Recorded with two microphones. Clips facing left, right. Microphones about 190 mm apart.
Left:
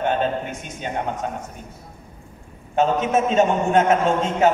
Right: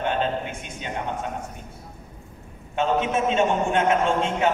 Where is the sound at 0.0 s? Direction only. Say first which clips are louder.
Left 3 dB; 40° left (ahead or behind).